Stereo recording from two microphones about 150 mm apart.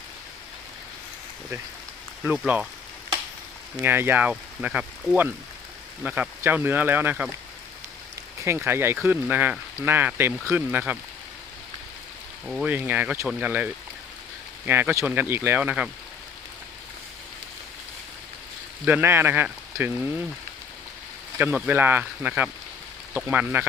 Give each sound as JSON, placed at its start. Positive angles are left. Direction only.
{"t": 2.2, "sound": "speech", "side_deg": -10}
{"t": 3.8, "sound": "speech", "side_deg": -15}
{"t": 8.4, "sound": "speech", "side_deg": -15}
{"t": 12.5, "sound": "speech", "side_deg": 0}
{"t": 18.9, "sound": "speech", "side_deg": -15}
{"t": 21.3, "sound": "speech", "side_deg": -10}